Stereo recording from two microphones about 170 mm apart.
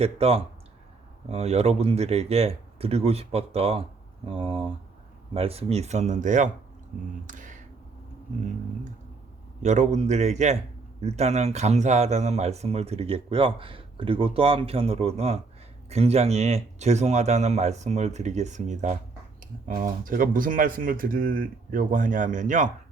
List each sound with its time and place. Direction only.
0.0 s speech: 35° right (ahead or behind)
7.3 s a sound: 50° right (ahead or behind)
9.6 s speech: 45° right (ahead or behind)
20.1 s speech: 55° right (ahead or behind)